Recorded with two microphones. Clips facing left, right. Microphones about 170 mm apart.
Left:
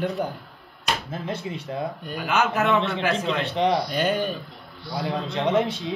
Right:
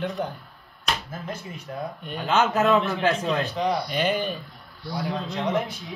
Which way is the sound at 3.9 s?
Centre (ahead or behind).